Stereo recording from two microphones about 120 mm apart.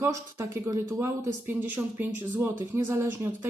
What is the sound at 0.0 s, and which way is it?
Speech, 20° right (ahead or behind).